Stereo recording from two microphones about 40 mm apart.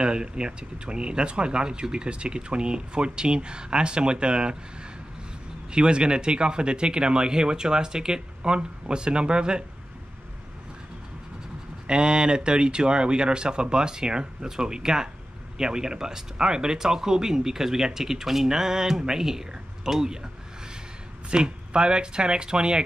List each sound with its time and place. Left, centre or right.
0.0 s speech: right
5.7 s speech: right
11.9 s speech: right
21.3 s speech: right